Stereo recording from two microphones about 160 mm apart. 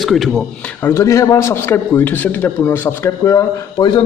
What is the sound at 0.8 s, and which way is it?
A man's voice, 15° left (ahead or behind).